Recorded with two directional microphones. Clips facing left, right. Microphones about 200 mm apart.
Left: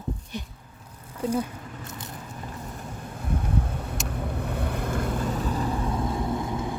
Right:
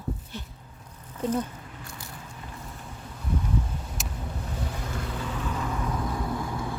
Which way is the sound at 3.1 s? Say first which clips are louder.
Left 1 dB; 55° left (ahead or behind).